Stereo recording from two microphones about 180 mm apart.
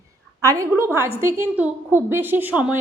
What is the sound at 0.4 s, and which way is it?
A woman's voice, 20° right (ahead or behind).